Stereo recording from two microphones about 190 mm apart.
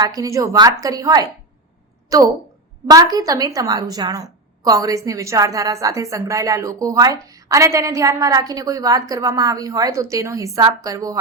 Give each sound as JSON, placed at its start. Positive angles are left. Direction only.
{"t": 0.0, "sound": "a woman's voice", "side_deg": -20}